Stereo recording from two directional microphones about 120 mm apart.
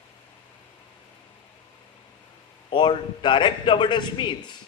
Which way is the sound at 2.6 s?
45° left (ahead or behind).